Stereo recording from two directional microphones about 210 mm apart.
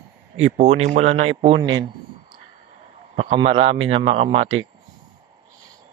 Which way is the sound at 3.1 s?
30° right (ahead or behind).